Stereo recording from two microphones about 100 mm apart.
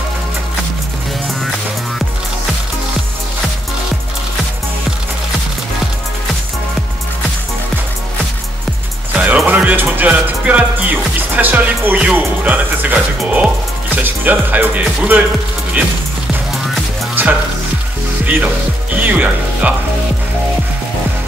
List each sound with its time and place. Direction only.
9.1 s music: 15° right (ahead or behind)
12.4 s speech: 15° right (ahead or behind)
17.1 s music: 20° right (ahead or behind)
18.9 s speech: 15° right (ahead or behind)